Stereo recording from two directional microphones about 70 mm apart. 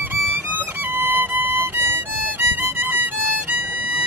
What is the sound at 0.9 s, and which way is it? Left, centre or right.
Violin, right.